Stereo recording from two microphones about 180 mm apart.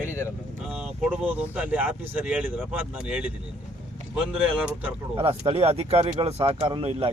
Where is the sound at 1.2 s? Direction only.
5° right (ahead or behind).